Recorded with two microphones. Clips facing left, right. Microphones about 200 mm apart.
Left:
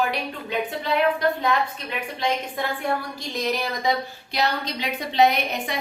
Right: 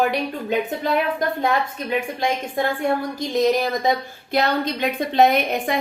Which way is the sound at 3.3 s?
45° right (ahead or behind).